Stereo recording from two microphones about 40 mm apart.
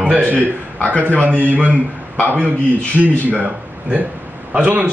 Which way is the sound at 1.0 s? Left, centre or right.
Left.